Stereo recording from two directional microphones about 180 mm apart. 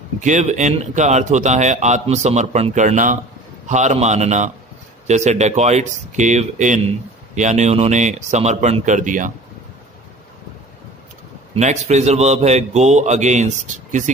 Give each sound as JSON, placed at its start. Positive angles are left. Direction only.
{"t": 0.2, "sound": "speech", "side_deg": -40}
{"t": 11.5, "sound": "speech", "side_deg": -40}